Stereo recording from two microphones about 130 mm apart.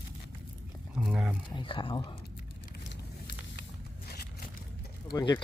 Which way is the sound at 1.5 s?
40° left (ahead or behind).